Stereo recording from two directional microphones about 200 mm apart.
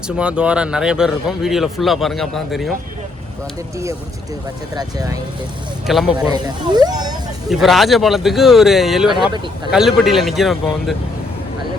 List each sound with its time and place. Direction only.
0.2 s speech: 5° right (ahead or behind)
4.7 s speech: 20° right (ahead or behind)
6.1 s speech: 20° right (ahead or behind)
7.4 s speech: centre (ahead or behind)